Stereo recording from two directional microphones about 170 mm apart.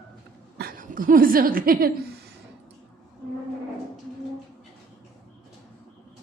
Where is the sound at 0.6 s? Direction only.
55° right (ahead or behind).